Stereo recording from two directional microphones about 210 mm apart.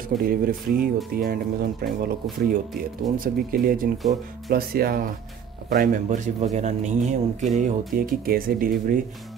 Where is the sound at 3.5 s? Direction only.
45° right (ahead or behind).